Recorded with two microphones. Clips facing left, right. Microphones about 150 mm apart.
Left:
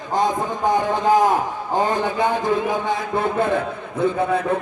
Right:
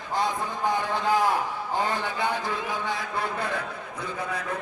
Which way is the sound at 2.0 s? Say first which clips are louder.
Left 8 dB; 20° left (ahead or behind).